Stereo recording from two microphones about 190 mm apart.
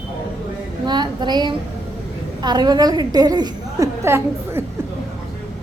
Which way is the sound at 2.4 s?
20° right (ahead or behind).